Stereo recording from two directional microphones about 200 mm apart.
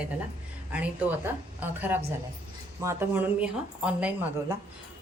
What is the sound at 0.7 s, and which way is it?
A woman's voice, 5° right (ahead or behind).